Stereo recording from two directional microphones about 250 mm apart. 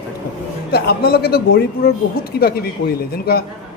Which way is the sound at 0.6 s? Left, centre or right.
Left.